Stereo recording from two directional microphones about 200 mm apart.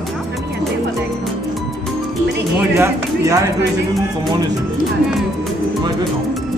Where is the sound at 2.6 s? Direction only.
15° right (ahead or behind).